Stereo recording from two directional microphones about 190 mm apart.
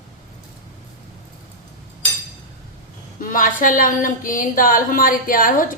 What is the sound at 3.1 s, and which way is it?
Speech, 45° left (ahead or behind).